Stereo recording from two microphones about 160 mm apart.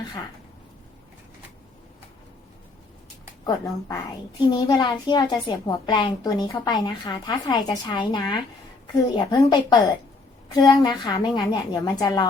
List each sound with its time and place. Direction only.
3.4 s a child's voice: 20° left (ahead or behind)